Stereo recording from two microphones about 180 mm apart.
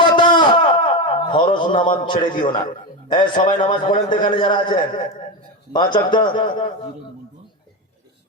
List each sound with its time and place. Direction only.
0.0 s a sound: 25° left (ahead or behind)
1.5 s a man's voice: 30° left (ahead or behind)
3.9 s a man's voice: 45° left (ahead or behind)
4.4 s a man's voice: 25° left (ahead or behind)